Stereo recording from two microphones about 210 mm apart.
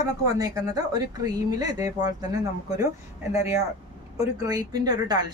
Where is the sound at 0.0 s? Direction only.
15° right (ahead or behind).